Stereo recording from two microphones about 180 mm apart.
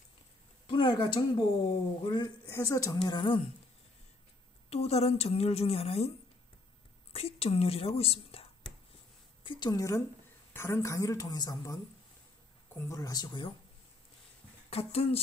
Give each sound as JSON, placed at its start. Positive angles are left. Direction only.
{"t": 0.7, "sound": "speech", "side_deg": 25}
{"t": 4.6, "sound": "a woman's voice", "side_deg": 35}
{"t": 14.7, "sound": "a woman's voice", "side_deg": 35}